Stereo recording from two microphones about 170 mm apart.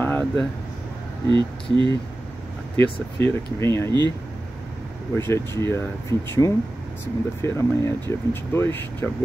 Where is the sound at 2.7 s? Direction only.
15° left (ahead or behind).